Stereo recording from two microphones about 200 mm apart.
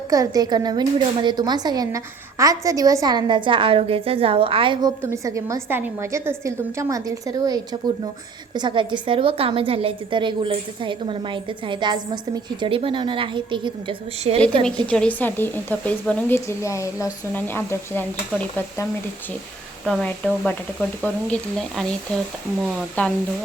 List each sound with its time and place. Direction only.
0.1 s a woman's voice: 20° right (ahead or behind)
14.8 s a woman's voice: 5° left (ahead or behind)